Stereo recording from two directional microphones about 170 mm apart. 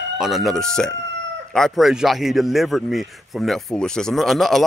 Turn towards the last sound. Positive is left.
turn(degrees=0)  # may be behind; listen again after turning